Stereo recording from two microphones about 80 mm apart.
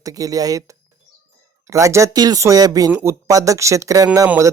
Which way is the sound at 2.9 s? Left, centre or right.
Right.